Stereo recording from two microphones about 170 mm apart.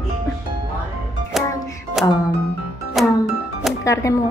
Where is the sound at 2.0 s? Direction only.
Centre (ahead or behind).